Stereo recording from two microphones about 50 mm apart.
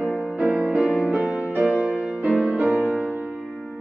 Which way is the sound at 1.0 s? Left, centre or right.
Centre.